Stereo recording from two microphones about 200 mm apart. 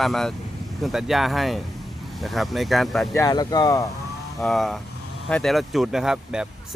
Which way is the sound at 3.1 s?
15° left (ahead or behind).